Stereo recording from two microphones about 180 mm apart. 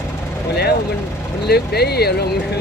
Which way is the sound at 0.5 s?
60° left (ahead or behind).